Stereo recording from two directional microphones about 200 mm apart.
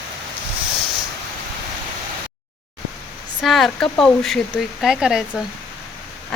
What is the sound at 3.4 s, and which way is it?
Speech, centre (ahead or behind).